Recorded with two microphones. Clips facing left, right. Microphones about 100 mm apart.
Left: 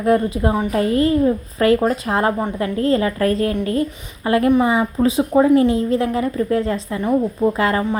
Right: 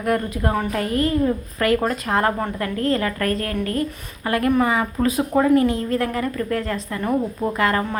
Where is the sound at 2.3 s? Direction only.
15° left (ahead or behind).